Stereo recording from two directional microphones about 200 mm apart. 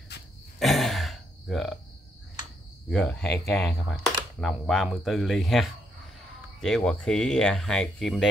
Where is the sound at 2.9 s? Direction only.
5° left (ahead or behind).